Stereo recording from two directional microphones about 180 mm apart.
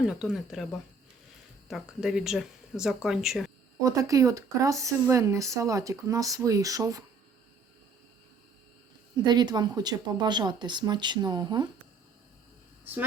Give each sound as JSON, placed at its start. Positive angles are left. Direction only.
{"t": 0.0, "sound": "speech", "side_deg": -5}
{"t": 3.8, "sound": "speech", "side_deg": -20}
{"t": 9.1, "sound": "speech", "side_deg": -25}
{"t": 12.8, "sound": "speech", "side_deg": -10}